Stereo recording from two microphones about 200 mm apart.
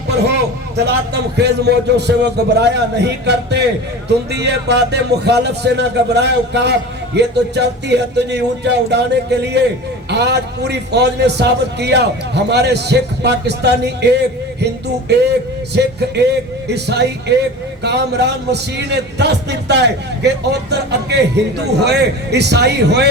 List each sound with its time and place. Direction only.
1.4 s a man's voice: 55° right (ahead or behind)